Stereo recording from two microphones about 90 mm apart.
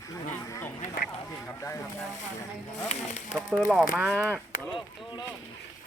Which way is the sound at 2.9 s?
90° left.